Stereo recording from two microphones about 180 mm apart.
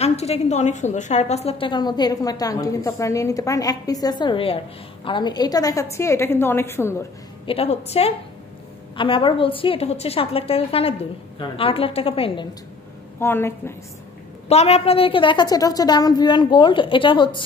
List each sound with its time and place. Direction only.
0.0 s a woman's voice: 35° left (ahead or behind); by 7.1 s 15° left (ahead or behind)
7.4 s a woman's voice: 35° left (ahead or behind)
13.2 s a woman's voice: 15° left (ahead or behind)
14.5 s a woman's voice: 35° left (ahead or behind)